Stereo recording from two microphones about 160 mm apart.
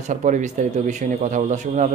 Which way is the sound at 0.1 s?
50° right (ahead or behind).